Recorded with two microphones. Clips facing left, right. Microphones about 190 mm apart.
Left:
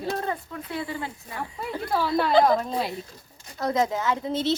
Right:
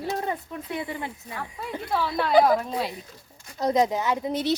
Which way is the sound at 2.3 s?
5° right (ahead or behind).